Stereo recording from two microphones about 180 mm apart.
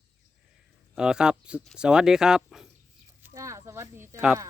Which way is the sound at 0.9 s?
5° right (ahead or behind).